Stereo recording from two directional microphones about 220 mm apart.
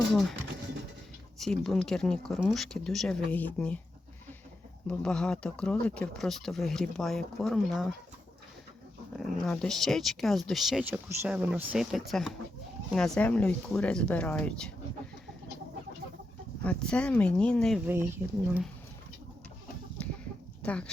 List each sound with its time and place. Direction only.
0.1 s speech: centre (ahead or behind)
1.4 s speech: centre (ahead or behind)
4.9 s speech: 5° left (ahead or behind)
9.1 s speech: centre (ahead or behind)
16.6 s speech: 5° left (ahead or behind)
20.6 s speech: 5° left (ahead or behind)